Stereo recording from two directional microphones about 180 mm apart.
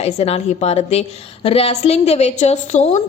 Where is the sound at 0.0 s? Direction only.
35° left (ahead or behind).